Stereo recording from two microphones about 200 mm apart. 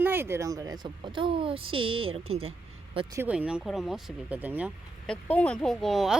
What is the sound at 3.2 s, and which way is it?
Speech, 5° right (ahead or behind).